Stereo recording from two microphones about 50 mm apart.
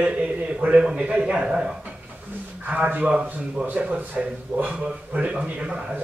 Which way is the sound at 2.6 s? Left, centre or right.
Right.